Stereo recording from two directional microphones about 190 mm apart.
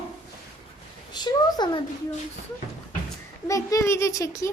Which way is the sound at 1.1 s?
20° left (ahead or behind).